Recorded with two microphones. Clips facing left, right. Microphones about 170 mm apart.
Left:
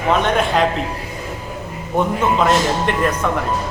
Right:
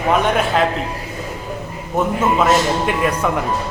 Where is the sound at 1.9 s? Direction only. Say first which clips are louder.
Even; centre (ahead or behind).